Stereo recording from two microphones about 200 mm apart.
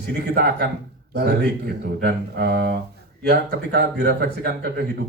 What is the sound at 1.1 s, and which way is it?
Speech, 55° right (ahead or behind).